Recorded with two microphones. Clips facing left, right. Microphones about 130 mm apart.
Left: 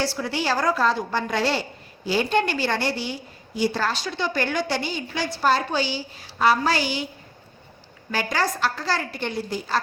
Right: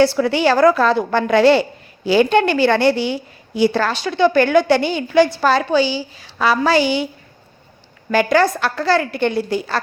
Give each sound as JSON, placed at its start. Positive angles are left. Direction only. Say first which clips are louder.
{"t": 0.0, "sound": "a woman's voice", "louder": "right 11 dB", "side_deg": -65}
{"t": 8.1, "sound": "a woman's voice", "louder": "right 10 dB", "side_deg": -65}